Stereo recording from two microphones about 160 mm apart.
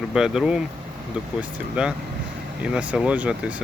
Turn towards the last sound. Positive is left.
turn(degrees=-10)  # may be behind; listen again after turning